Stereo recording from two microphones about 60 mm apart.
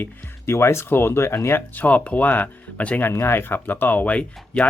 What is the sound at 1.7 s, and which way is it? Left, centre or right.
Speech, left.